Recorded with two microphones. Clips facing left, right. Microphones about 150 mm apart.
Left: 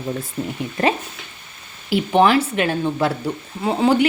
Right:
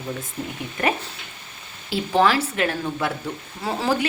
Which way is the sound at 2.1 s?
20° left (ahead or behind).